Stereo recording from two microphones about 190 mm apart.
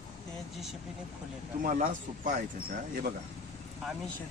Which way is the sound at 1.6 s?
40° right (ahead or behind).